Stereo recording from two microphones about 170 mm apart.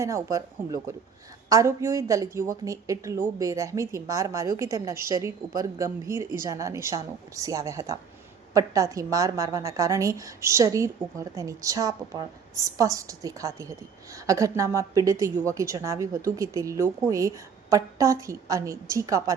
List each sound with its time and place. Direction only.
0.0 s a woman's voice: 20° right (ahead or behind)